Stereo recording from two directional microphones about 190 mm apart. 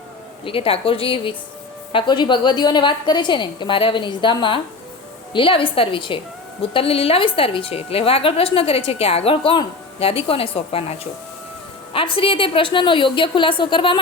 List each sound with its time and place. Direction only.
0.4 s a woman's voice: 30° left (ahead or behind)